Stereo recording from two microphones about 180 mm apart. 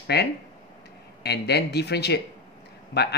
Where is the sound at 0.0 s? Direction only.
65° left (ahead or behind).